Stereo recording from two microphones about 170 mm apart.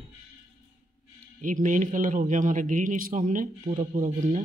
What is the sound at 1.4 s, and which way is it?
Speech, 50° right (ahead or behind).